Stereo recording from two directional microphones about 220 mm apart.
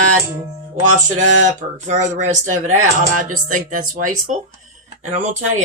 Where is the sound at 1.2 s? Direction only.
35° right (ahead or behind).